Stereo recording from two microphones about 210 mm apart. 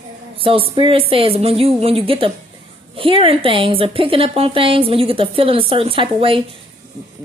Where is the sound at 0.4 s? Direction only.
25° right (ahead or behind).